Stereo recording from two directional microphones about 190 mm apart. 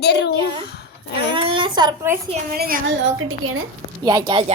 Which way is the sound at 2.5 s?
50° right (ahead or behind).